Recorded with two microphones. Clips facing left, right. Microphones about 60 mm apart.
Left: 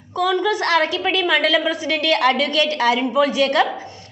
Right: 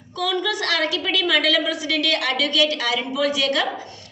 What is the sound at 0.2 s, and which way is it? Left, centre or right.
A woman's voice, left.